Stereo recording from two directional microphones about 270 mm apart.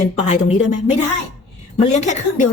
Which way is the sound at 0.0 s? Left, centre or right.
Left.